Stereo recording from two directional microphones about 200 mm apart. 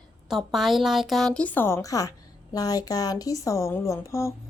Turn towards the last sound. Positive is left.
turn(degrees=15)  # may be behind; listen again after turning